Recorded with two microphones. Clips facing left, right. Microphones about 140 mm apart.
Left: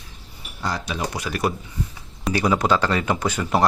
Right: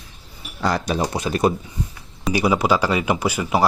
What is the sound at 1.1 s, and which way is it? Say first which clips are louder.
Speech: right 5 dB; 25° right (ahead or behind).